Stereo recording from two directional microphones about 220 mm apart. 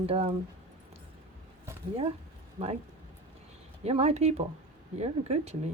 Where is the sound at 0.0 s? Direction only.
30° right (ahead or behind).